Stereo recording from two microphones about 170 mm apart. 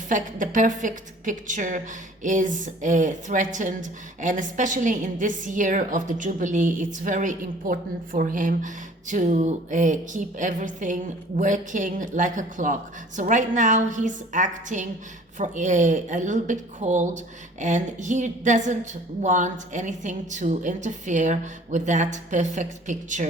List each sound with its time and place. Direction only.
0.1 s a woman's voice: 50° right (ahead or behind)